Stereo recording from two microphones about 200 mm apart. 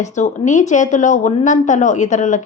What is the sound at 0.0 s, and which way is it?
A woman's voice, 35° left (ahead or behind).